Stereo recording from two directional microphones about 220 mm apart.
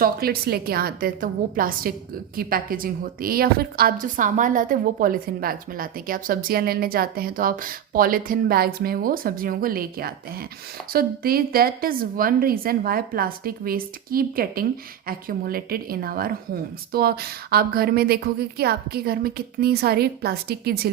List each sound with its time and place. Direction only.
0.0 s a woman's voice: 45° right (ahead or behind)